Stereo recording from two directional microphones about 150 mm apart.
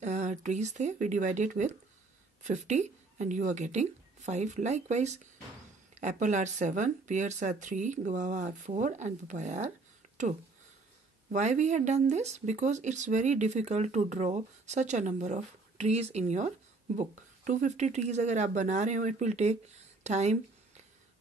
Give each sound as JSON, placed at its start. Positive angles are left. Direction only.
{"t": 0.0, "sound": "speech", "side_deg": -50}
{"t": 11.3, "sound": "speech", "side_deg": -50}
{"t": 20.0, "sound": "a sound", "side_deg": -50}